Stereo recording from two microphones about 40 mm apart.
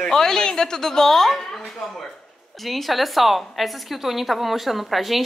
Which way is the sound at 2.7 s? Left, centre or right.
Centre.